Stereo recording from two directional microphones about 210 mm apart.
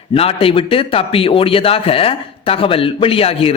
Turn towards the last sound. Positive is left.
turn(degrees=30)  # may be behind; listen again after turning